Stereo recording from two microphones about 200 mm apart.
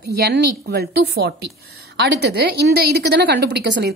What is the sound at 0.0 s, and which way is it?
A woman's voice, 55° right (ahead or behind).